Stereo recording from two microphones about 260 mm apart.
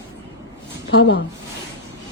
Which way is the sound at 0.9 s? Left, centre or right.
Left.